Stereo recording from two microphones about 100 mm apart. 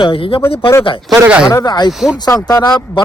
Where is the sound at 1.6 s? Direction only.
45° left (ahead or behind).